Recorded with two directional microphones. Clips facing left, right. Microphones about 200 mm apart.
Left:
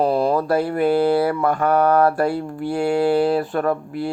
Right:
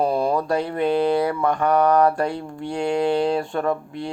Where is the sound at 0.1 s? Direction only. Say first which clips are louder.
Left 3 dB; 5° left (ahead or behind).